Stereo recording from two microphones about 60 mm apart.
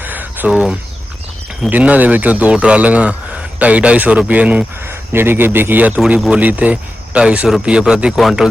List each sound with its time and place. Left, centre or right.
0.0 s a sound: right
0.5 s speech: centre
1.7 s speech: right
4.9 s a man's voice: right; by 8.2 s centre
8.2 s speech: centre